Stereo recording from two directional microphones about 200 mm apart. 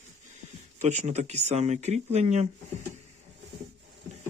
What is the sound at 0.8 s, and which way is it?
Speech, 35° right (ahead or behind).